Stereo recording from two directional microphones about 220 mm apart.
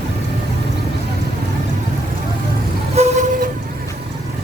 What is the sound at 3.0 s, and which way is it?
Vehicle, 30° right (ahead or behind).